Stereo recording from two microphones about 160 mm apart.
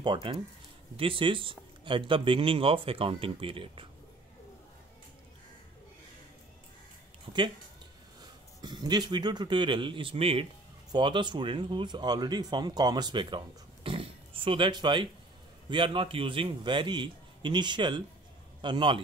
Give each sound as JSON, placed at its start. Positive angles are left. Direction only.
{"t": 0.0, "sound": "speech", "side_deg": -30}
{"t": 8.2, "sound": "a man's voice", "side_deg": -25}
{"t": 13.8, "sound": "a sound", "side_deg": -35}
{"t": 15.7, "sound": "speech", "side_deg": -30}